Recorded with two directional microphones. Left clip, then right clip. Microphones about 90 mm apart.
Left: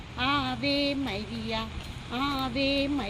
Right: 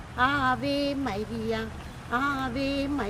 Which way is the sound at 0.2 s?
50° right (ahead or behind).